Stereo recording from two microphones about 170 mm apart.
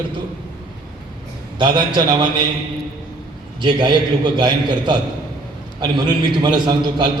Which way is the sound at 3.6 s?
25° right (ahead or behind).